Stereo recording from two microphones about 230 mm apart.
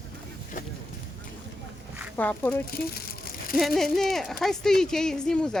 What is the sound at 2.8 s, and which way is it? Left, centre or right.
Crumpling, left.